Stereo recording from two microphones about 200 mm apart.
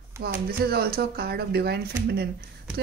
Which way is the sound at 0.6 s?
50° right (ahead or behind).